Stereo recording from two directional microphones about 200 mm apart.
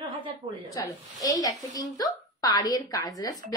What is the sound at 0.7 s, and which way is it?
A woman's voice, 20° left (ahead or behind).